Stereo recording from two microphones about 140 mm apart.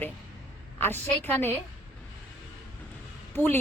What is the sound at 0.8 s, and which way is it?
Speech, 15° left (ahead or behind).